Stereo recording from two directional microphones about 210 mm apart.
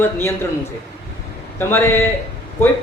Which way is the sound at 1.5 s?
10° left (ahead or behind).